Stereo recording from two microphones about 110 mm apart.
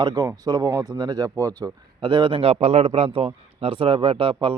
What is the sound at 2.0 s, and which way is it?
A man's voice, 45° right (ahead or behind).